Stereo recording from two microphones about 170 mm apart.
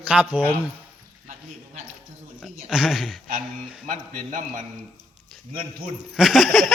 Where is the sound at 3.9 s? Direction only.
45° right (ahead or behind).